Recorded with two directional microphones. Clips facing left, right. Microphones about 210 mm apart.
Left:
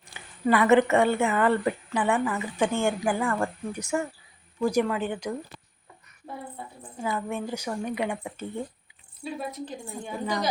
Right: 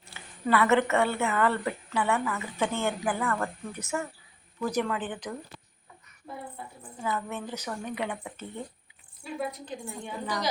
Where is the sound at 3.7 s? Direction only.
15° left (ahead or behind).